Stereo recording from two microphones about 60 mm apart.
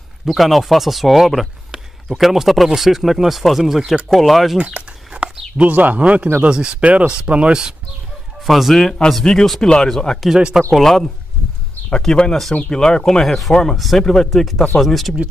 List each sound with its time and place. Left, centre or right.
0.2 s speech: centre
4.6 s speech: centre
8.5 s speech: centre
8.8 s speech: centre
10.3 s speech: centre
10.7 s speech: centre